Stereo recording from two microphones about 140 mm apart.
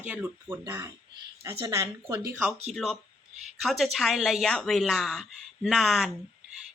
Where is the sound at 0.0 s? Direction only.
15° right (ahead or behind).